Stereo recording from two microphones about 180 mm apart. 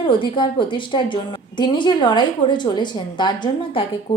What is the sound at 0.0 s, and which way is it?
A woman's voice, 25° left (ahead or behind).